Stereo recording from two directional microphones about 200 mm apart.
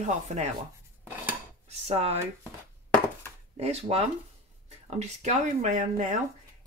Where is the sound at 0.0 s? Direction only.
35° right (ahead or behind).